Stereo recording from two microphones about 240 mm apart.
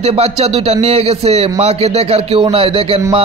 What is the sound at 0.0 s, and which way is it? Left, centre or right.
Speech, right.